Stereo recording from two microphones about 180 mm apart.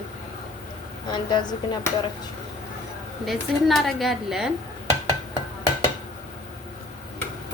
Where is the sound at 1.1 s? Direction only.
25° left (ahead or behind).